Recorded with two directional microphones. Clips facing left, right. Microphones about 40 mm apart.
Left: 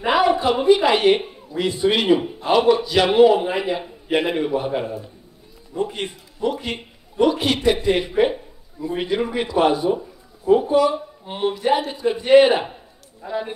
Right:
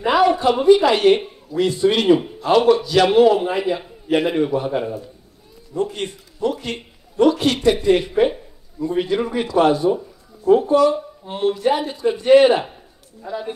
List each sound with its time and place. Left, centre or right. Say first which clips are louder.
0.0 s a man's voice: right 2 dB; centre